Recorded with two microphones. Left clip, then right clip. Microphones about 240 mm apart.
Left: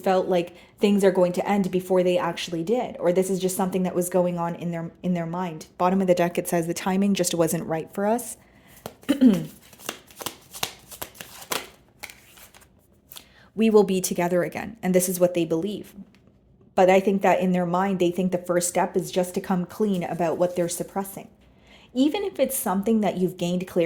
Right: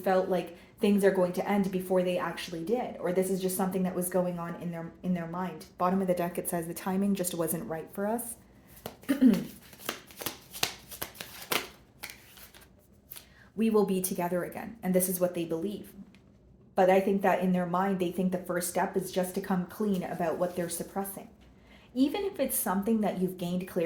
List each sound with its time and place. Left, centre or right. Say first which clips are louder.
0.0 s a woman's voice: left 6 dB; left
9.8 s shuffling cards: left 3 dB; left
13.6 s a woman's voice: left 8 dB; left